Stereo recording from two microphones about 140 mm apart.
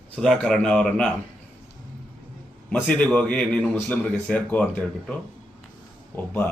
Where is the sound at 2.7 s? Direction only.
10° left (ahead or behind).